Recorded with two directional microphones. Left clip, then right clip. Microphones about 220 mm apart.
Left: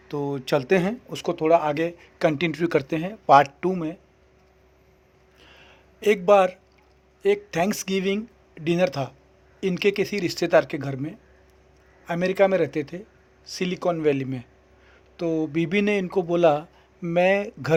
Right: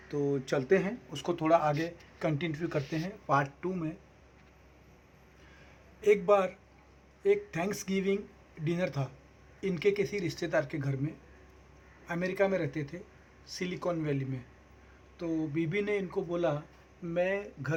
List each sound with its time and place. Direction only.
0.1 s speech: 35° left (ahead or behind)
1.1 s speech: 25° left (ahead or behind)
1.6 s speech: 45° left (ahead or behind)
6.0 s speech: 45° left (ahead or behind)